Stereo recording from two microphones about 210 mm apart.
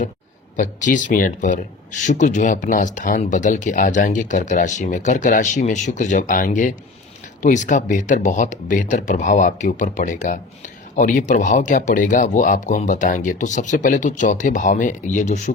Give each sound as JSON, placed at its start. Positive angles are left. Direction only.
{"t": 0.5, "sound": "speech", "side_deg": 40}